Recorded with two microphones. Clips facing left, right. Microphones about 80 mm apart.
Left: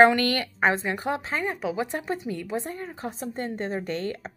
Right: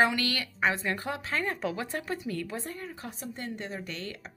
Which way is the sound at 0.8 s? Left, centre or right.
Left.